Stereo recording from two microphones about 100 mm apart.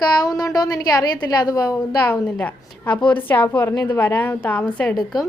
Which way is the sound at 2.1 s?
15° left (ahead or behind).